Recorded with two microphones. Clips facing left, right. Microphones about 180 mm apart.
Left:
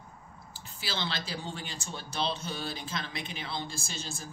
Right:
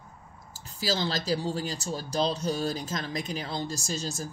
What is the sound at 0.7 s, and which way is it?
Speech, 40° right (ahead or behind).